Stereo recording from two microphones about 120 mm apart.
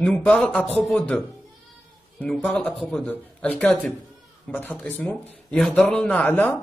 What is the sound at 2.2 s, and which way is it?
Speech, 5° left (ahead or behind).